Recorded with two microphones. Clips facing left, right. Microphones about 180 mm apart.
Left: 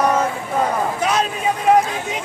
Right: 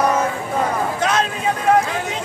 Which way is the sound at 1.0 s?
15° left (ahead or behind).